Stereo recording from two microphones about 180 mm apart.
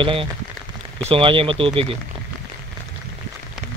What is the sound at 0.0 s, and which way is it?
Speech, 30° right (ahead or behind).